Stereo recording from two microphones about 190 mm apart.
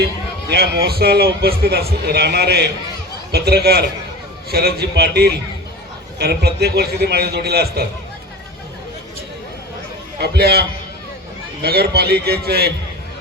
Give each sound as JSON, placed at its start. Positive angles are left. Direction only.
{"t": 0.0, "sound": "a man's voice", "side_deg": -60}
{"t": 10.2, "sound": "a man's voice", "side_deg": -60}